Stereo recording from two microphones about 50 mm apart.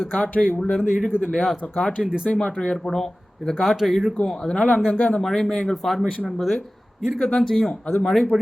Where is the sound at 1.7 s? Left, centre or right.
Centre.